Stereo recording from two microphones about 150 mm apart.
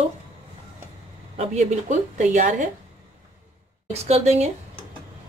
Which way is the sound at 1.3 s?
50° right (ahead or behind).